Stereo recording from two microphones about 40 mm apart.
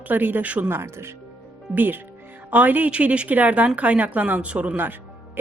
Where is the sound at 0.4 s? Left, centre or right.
Right.